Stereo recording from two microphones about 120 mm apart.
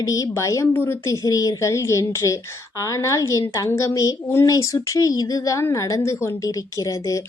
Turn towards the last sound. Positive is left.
turn(degrees=25)  # may be behind; listen again after turning